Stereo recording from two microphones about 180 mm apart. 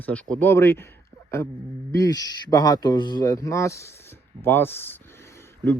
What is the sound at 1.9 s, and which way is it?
A man's voice, 20° left (ahead or behind).